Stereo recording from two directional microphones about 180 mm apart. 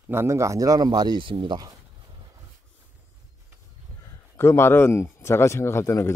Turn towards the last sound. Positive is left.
turn(degrees=15)  # may be behind; listen again after turning